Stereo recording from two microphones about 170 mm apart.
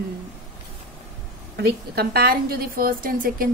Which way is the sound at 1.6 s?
70° right (ahead or behind).